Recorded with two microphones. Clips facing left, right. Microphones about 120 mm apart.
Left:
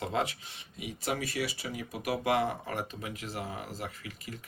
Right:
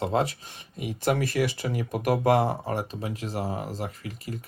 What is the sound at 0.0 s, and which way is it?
Speech, 35° right (ahead or behind).